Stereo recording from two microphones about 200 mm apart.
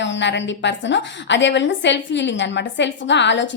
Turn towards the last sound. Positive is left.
turn(degrees=65)  # may be behind; listen again after turning